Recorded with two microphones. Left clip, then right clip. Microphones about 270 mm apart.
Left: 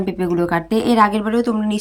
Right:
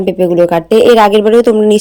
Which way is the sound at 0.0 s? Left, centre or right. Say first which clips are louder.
Right 11 dB; centre.